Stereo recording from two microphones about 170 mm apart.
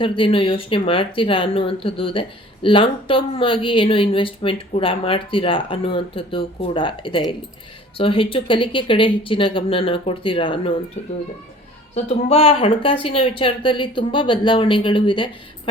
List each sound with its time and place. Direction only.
0.0 s speech: 30° left (ahead or behind)
12.0 s speech: 35° left (ahead or behind)